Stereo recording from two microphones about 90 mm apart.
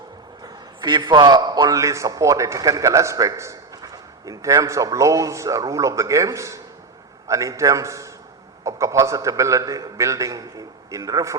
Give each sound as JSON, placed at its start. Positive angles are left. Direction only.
{"t": 0.4, "sound": "a man's voice", "side_deg": -50}